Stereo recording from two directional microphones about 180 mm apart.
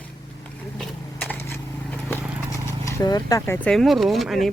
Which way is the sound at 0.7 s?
10° left (ahead or behind).